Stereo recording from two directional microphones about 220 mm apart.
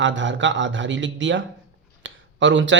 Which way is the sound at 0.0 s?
55° right (ahead or behind).